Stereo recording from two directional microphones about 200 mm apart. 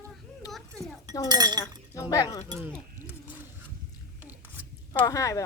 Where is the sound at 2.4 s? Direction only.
15° right (ahead or behind).